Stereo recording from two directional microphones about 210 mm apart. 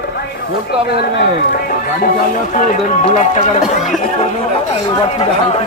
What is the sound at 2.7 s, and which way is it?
Chopping, 35° left (ahead or behind).